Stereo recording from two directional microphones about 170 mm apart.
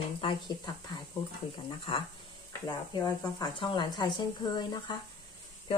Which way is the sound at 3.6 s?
30° left (ahead or behind).